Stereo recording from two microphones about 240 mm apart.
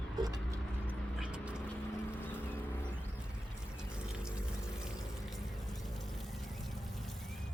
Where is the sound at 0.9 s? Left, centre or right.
Centre.